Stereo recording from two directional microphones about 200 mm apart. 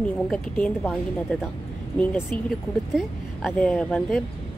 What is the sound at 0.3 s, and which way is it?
A woman's voice, centre (ahead or behind).